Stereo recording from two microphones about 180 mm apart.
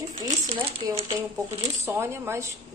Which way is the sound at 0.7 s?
30° right (ahead or behind).